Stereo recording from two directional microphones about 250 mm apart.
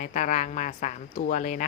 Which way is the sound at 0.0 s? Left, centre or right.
Left.